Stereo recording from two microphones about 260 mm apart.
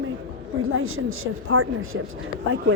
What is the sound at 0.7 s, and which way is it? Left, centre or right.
Speech, right.